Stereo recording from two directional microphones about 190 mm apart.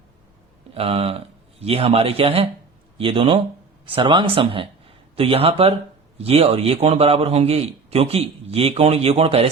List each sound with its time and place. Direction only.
0.7 s a man's voice: 30° right (ahead or behind)